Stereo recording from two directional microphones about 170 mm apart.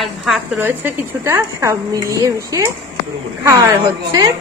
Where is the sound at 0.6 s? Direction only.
15° right (ahead or behind).